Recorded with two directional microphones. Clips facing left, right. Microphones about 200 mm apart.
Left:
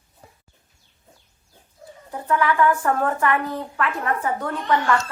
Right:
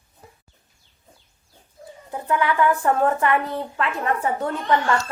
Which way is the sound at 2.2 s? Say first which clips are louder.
Left 1 dB; 20° right (ahead or behind).